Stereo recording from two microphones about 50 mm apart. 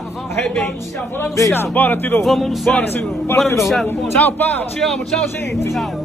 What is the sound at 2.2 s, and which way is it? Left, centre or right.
Music, centre.